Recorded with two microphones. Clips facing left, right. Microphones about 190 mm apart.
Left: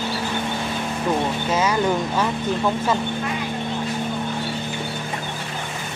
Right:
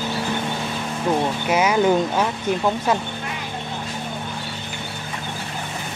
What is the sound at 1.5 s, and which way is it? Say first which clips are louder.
Speech: right 4 dB; 15° right (ahead or behind).